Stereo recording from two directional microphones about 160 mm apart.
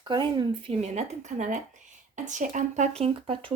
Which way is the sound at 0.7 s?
45° right (ahead or behind).